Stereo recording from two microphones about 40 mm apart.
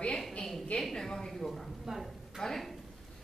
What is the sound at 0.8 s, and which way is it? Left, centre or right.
Speech, centre.